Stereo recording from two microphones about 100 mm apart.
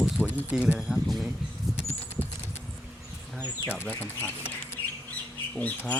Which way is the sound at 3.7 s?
15° left (ahead or behind).